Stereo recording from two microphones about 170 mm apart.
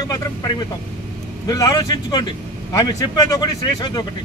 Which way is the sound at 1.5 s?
20° left (ahead or behind).